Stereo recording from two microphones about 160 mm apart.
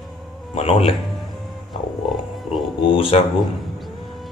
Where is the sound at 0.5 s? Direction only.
35° left (ahead or behind).